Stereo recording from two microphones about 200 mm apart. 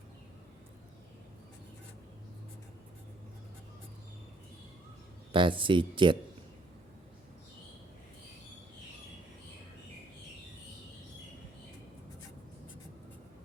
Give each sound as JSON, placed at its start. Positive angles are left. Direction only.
{"t": 5.3, "sound": "speech", "side_deg": -25}